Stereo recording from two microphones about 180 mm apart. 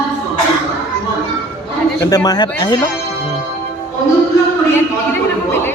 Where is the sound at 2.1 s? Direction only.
20° left (ahead or behind).